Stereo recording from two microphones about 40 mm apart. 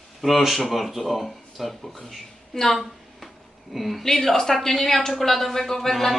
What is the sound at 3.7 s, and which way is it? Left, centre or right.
A woman's voice, centre.